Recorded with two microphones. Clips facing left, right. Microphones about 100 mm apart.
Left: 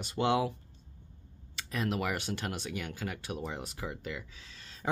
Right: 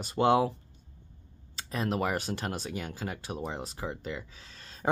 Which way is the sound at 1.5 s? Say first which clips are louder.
Right 2 dB; 35° right (ahead or behind).